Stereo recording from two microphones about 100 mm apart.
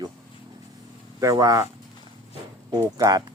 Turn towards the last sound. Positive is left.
turn(degrees=-40)  # may be behind; listen again after turning